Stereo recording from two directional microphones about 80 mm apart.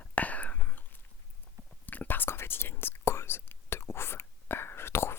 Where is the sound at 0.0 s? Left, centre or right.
Centre.